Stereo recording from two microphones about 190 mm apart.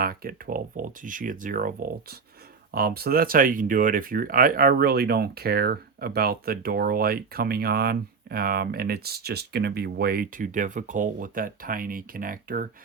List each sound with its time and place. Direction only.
0.0 s speech: 50° right (ahead or behind)